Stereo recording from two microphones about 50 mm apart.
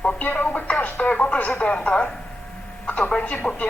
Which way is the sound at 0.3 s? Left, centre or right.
Left.